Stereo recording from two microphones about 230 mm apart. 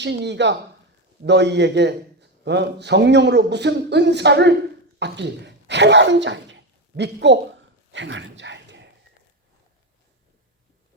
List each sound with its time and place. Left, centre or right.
0.0 s a man's voice: right